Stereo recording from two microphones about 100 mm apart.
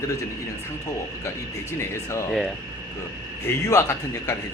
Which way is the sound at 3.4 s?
35° left (ahead or behind).